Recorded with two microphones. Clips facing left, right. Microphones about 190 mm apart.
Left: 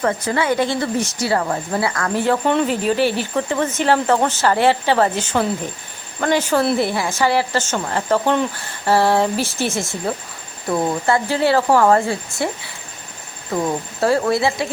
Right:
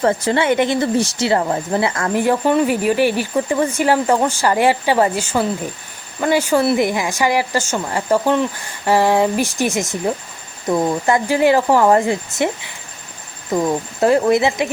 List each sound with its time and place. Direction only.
0.0 s speech: 30° right (ahead or behind)
2.2 s speech: 10° right (ahead or behind)
13.5 s speech: 15° right (ahead or behind)